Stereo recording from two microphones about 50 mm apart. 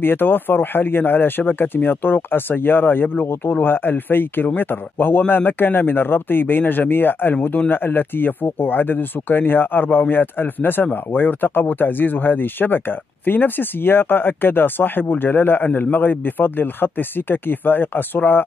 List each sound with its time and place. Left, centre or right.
0.0 s speech: left